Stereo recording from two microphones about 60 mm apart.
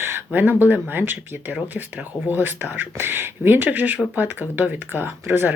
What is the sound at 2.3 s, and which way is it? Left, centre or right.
Speech, right.